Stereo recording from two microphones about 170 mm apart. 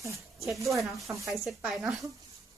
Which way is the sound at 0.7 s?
Centre (ahead or behind).